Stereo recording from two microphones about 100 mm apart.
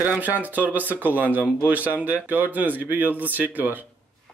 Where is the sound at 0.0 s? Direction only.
15° right (ahead or behind).